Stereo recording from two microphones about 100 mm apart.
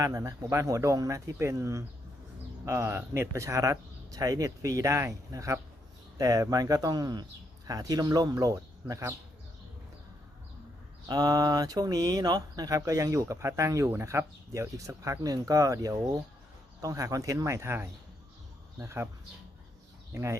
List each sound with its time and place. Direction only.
0.0 s speech: 35° right (ahead or behind)
11.1 s speech: 40° right (ahead or behind)
20.1 s speech: 30° right (ahead or behind)